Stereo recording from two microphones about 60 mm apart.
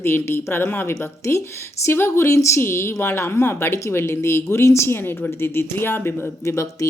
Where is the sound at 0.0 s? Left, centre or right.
Left.